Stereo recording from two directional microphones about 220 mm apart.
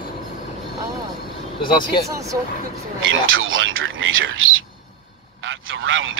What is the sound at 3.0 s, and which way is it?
Speech, 65° right (ahead or behind).